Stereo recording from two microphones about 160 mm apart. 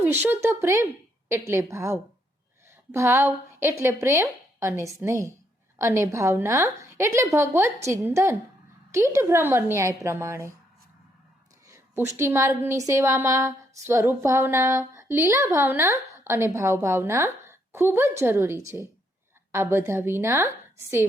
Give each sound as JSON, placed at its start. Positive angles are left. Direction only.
{"t": 0.0, "sound": "a woman's voice", "side_deg": -10}
{"t": 12.1, "sound": "a woman's voice", "side_deg": -15}